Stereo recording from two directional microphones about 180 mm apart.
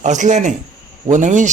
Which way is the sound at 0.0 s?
40° right (ahead or behind).